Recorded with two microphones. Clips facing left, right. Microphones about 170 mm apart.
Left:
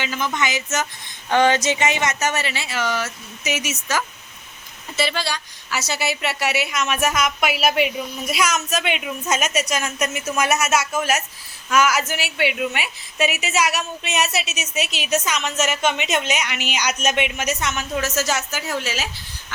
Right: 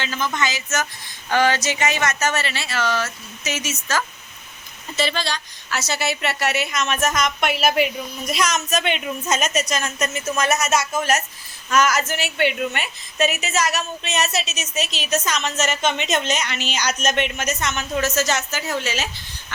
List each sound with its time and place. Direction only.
0.0 s a woman's voice: 15° left (ahead or behind)